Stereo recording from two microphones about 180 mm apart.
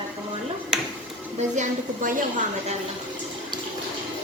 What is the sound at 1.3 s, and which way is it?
Speech, 40° right (ahead or behind).